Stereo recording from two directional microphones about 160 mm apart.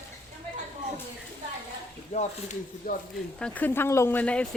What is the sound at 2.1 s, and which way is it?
Speech, 50° left (ahead or behind).